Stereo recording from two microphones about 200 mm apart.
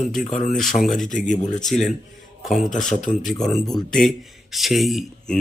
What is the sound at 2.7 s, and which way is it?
Speech, 40° left (ahead or behind).